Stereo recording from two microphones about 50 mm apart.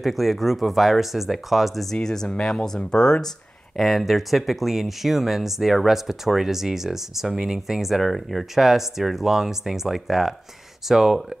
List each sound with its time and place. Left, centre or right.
0.0 s speech: centre
2.0 s speech: centre
3.7 s speech: centre